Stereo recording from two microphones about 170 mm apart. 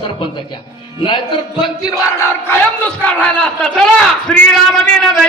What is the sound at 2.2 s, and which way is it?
A man's voice, 10° left (ahead or behind).